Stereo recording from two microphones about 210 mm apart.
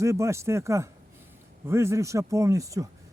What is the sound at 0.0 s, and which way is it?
Speech, 15° right (ahead or behind).